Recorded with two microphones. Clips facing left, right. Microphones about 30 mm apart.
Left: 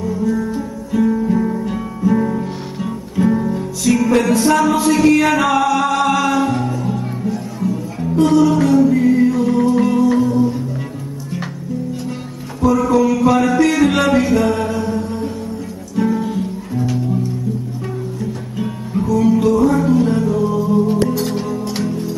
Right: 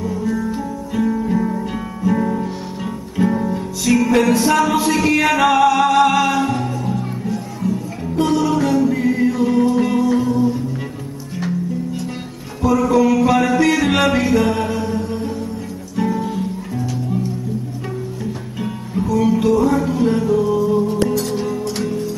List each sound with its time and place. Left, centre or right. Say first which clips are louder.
0.0 s music: left 2 dB; centre
12.6 s music: left 1 dB; centre
18.6 s music: left 2 dB; centre
20.8 s music: left 2 dB; centre